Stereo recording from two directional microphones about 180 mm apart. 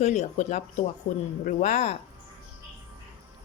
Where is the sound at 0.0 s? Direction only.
40° left (ahead or behind).